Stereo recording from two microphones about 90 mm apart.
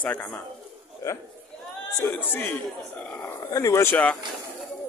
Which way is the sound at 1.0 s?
30° left (ahead or behind).